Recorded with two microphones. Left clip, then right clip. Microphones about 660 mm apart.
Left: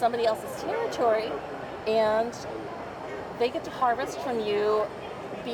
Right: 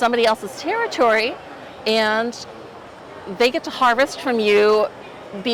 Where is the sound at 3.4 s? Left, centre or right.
Right.